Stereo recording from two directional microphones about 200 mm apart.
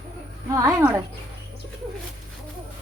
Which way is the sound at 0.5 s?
10° right (ahead or behind).